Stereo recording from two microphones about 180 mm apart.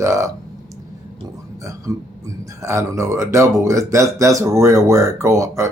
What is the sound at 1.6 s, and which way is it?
Speech, 20° right (ahead or behind).